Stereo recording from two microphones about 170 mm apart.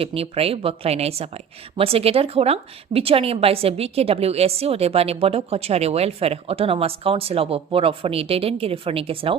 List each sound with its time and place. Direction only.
0.0 s a woman's voice: 35° right (ahead or behind)